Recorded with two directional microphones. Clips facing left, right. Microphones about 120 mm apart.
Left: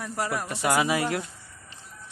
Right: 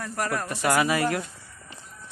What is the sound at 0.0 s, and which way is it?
Speech, 10° left (ahead or behind).